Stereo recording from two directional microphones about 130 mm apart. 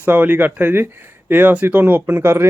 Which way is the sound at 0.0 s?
15° right (ahead or behind).